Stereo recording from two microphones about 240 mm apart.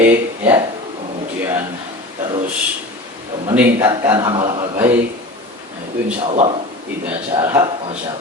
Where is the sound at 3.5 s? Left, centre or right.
Centre.